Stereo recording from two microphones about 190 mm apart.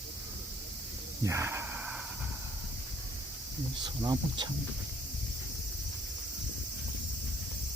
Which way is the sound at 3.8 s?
20° right (ahead or behind).